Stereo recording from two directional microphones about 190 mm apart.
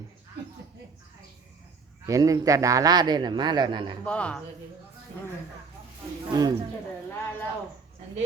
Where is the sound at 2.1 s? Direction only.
15° right (ahead or behind).